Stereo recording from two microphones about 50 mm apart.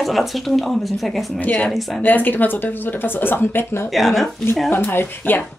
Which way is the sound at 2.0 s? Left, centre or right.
Left.